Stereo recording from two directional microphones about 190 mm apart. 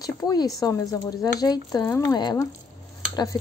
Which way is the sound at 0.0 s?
20° left (ahead or behind).